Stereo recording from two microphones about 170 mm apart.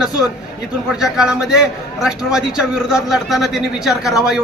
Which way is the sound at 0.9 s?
5° right (ahead or behind).